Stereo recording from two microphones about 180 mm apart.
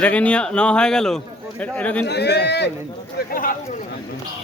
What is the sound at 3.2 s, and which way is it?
Speech, 55° left (ahead or behind).